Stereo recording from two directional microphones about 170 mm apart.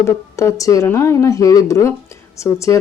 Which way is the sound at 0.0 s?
15° left (ahead or behind).